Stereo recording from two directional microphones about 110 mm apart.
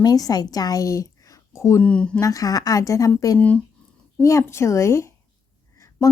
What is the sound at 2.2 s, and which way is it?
A woman's voice, 35° left (ahead or behind).